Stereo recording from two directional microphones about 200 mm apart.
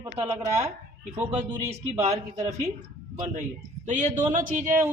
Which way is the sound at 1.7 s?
30° right (ahead or behind).